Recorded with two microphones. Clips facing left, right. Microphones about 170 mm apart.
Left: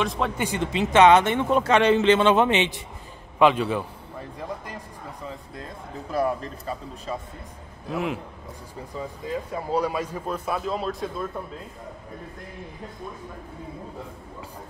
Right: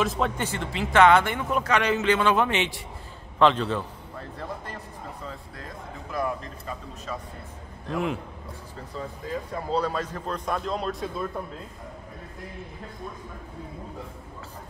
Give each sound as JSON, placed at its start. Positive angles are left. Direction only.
{"t": 0.0, "sound": "a man's voice", "side_deg": 0}
{"t": 0.4, "sound": "a man's voice", "side_deg": 15}
{"t": 6.1, "sound": "a man's voice", "side_deg": 35}
{"t": 7.9, "sound": "a man's voice", "side_deg": 0}
{"t": 9.5, "sound": "a man's voice", "side_deg": 10}